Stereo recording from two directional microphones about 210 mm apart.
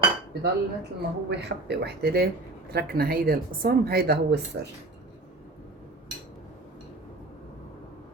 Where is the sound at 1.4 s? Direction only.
50° right (ahead or behind).